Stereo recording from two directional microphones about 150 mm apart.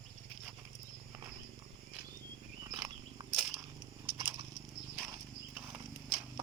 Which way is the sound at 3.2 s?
20° right (ahead or behind).